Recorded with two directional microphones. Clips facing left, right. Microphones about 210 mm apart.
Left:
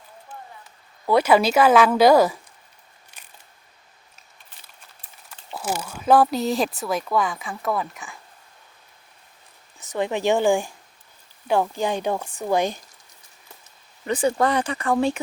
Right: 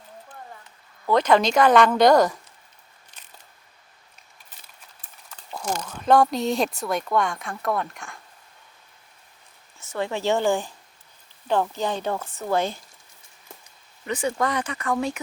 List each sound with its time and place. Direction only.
1.0 s speech: 10° left (ahead or behind)
5.5 s speech: 5° left (ahead or behind)
9.7 s speech: 15° left (ahead or behind)
14.1 s speech: 35° left (ahead or behind)